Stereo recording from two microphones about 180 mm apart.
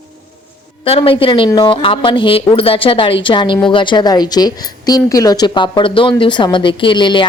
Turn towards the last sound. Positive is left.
turn(degrees=25)  # may be behind; listen again after turning